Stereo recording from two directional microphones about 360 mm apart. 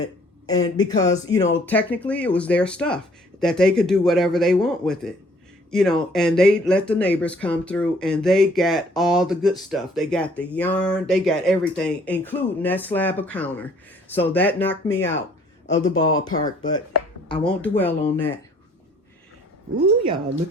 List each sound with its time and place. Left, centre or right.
0.0 s speech: centre
14.9 s speech: left
15.6 s speech: centre